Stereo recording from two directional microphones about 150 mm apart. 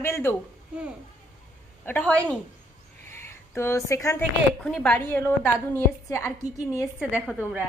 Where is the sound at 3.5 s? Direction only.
15° left (ahead or behind).